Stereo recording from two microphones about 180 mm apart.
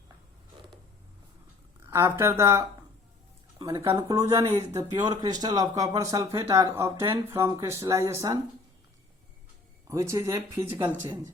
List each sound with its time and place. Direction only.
1.9 s speech: 15° right (ahead or behind)
9.8 s speech: 15° right (ahead or behind)